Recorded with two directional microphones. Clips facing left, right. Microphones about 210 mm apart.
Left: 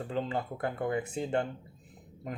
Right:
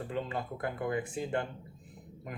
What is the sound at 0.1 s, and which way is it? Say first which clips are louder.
Speech: left 4 dB; 25° left (ahead or behind).